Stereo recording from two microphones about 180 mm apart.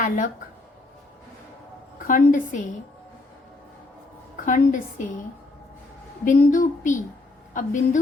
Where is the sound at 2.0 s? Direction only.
50° left (ahead or behind).